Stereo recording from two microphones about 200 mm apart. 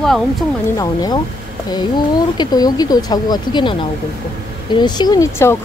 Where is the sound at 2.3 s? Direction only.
20° left (ahead or behind).